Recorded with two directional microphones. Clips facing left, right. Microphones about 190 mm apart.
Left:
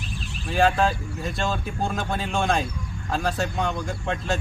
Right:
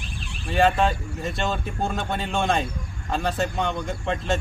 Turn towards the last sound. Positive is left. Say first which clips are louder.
# right 1 dB
turn(degrees=0)  # may be behind; listen again after turning